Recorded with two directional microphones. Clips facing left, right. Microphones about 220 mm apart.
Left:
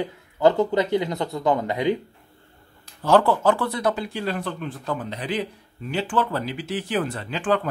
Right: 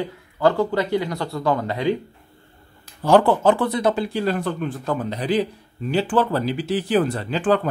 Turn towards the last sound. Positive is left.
turn(degrees=-35)  # may be behind; listen again after turning